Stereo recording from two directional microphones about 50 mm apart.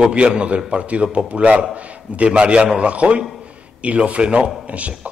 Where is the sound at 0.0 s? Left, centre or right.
Right.